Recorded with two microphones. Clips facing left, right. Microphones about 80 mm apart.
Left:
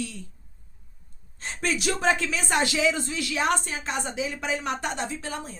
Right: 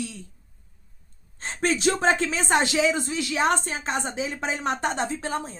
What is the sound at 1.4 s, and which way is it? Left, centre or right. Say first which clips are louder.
Speech: right 5 dB; right.